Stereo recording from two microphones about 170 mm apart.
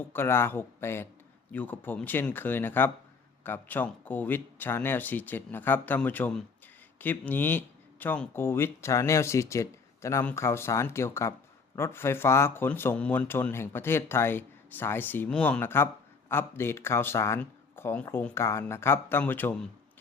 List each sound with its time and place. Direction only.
0.0 s speech: 15° left (ahead or behind)